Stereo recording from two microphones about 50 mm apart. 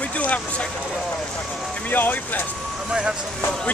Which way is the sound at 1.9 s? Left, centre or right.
Left.